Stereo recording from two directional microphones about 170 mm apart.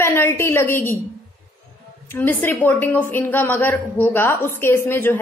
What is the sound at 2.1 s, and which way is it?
A woman's voice, 10° left (ahead or behind).